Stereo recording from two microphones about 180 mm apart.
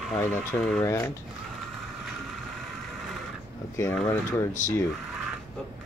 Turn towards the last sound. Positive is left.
turn(degrees=15)  # may be behind; listen again after turning